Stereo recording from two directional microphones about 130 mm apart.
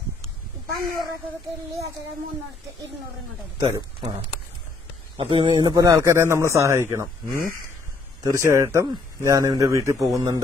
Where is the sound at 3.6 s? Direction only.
30° right (ahead or behind).